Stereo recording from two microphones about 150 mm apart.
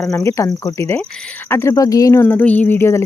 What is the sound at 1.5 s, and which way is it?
Speech, 15° left (ahead or behind).